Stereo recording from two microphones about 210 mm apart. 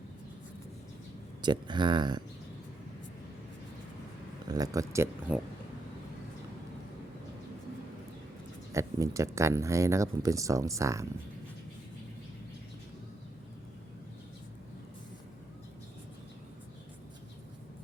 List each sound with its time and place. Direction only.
1.4 s speech: 20° right (ahead or behind)
4.4 s speech: 20° right (ahead or behind)
8.7 s speech: 15° right (ahead or behind)